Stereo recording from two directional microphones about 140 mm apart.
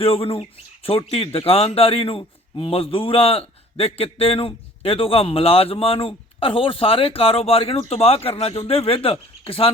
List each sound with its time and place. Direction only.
0.0 s a man's voice: 40° left (ahead or behind)